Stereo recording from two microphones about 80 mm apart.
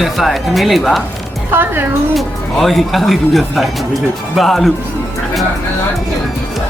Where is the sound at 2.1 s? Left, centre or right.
Centre.